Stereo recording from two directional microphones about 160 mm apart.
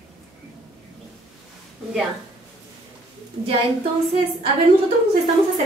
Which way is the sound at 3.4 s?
35° right (ahead or behind).